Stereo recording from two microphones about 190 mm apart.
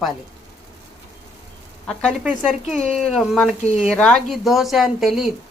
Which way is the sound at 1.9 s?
5° left (ahead or behind).